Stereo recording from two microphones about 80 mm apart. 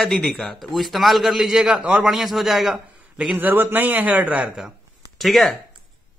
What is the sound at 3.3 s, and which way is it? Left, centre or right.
Speech, right.